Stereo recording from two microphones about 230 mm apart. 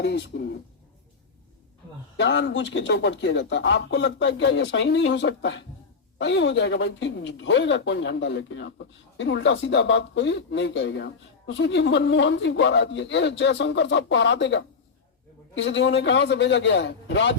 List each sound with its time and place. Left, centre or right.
0.0 s speech: left
2.1 s speech: left